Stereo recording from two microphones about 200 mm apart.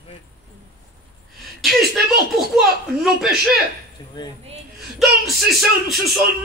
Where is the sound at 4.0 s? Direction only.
20° left (ahead or behind).